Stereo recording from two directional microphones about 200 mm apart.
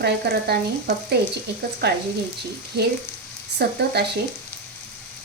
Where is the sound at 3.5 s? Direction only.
55° right (ahead or behind).